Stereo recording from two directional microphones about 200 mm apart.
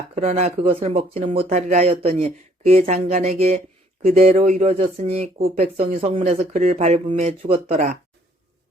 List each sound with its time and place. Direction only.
0.2 s speech: 35° right (ahead or behind)